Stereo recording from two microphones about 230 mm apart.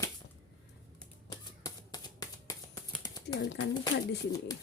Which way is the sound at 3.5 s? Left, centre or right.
Left.